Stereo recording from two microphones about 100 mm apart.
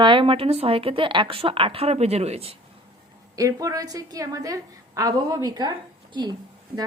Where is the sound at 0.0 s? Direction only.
55° right (ahead or behind); by 2.6 s 90° right.